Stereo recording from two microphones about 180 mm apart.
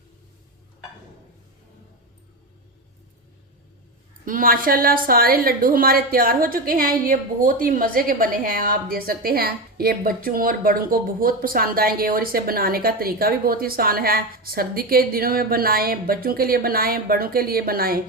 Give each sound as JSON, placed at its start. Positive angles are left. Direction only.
{"t": 4.3, "sound": "a woman's voice", "side_deg": -50}